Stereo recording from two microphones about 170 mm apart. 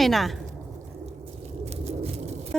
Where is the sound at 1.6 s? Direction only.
40° right (ahead or behind).